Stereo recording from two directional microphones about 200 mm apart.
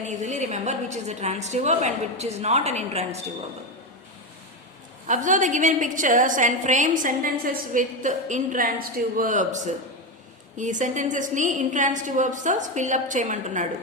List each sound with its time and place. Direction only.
0.2 s a woman's voice: 35° right (ahead or behind)
5.0 s a woman's voice: 40° right (ahead or behind)